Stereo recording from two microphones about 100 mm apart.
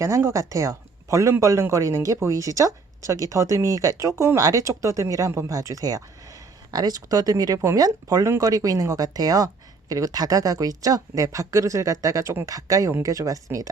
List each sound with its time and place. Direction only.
0.0 s speech: 25° right (ahead or behind)